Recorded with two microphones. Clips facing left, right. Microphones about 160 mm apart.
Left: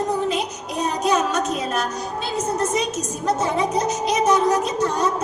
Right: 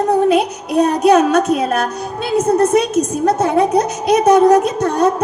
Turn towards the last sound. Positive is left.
turn(degrees=-60)  # may be behind; listen again after turning